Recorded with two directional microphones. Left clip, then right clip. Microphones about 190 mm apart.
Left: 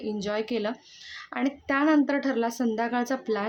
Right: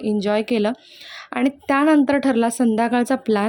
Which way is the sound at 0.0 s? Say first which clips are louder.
Right 9 dB; 35° right (ahead or behind).